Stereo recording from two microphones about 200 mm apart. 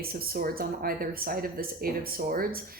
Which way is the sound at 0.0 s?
50° right (ahead or behind).